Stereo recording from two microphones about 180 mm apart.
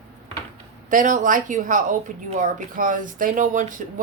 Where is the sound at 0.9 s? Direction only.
45° right (ahead or behind).